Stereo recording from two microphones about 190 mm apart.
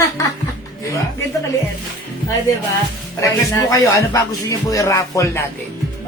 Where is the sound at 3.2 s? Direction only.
15° left (ahead or behind).